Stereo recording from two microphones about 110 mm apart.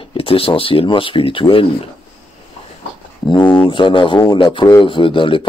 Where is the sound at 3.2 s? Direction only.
45° left (ahead or behind).